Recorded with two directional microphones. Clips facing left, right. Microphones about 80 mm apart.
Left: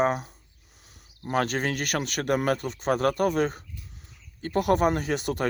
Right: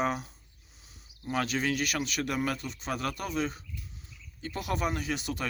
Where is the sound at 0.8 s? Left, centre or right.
Left.